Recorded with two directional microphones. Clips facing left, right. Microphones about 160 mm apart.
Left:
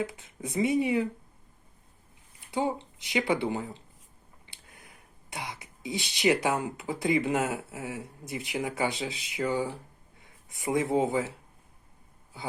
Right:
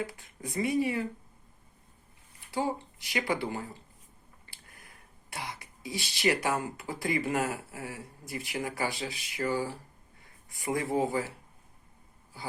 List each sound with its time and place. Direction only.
0.0 s speech: 20° left (ahead or behind)
2.5 s speech: 20° left (ahead or behind)